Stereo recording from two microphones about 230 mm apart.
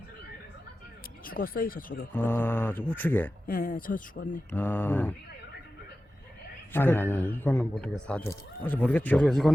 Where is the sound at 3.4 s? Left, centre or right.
Left.